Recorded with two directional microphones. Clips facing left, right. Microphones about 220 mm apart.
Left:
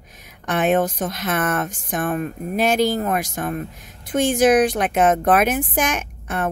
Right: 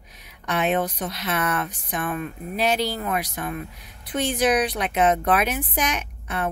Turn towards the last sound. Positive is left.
turn(degrees=50)  # may be behind; listen again after turning